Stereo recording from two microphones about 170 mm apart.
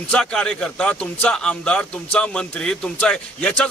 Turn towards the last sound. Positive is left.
turn(degrees=5)  # may be behind; listen again after turning